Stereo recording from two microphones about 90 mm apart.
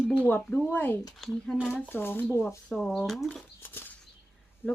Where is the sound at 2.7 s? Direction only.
Centre (ahead or behind).